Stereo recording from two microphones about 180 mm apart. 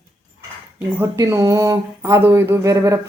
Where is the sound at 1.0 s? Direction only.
15° right (ahead or behind).